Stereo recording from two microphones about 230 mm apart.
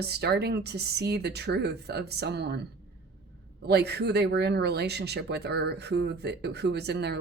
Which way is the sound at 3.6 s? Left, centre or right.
Right.